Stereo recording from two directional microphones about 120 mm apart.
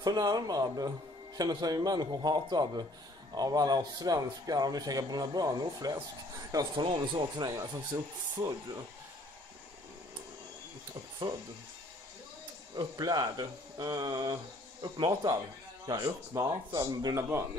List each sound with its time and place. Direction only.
0.0 s a man's voice: 35° right (ahead or behind)
6.5 s a man's voice: 40° right (ahead or behind)
12.7 s a man's voice: 35° right (ahead or behind)